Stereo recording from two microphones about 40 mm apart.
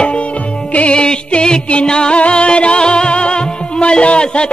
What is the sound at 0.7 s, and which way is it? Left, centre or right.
Music, left.